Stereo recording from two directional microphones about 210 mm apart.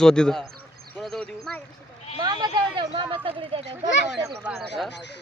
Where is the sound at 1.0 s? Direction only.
Centre (ahead or behind).